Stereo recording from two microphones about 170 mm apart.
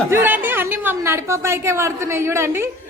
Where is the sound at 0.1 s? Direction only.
10° right (ahead or behind).